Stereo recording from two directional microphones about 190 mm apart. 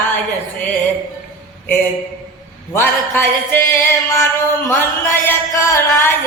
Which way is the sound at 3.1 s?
10° left (ahead or behind).